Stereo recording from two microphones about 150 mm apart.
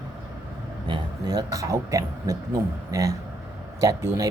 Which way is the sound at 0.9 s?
30° right (ahead or behind).